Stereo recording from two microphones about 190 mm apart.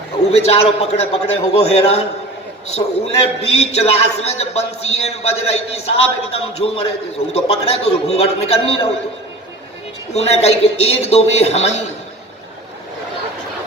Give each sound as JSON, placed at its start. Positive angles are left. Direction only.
{"t": 0.3, "sound": "a man's voice", "side_deg": 35}
{"t": 10.2, "sound": "a man's voice", "side_deg": 35}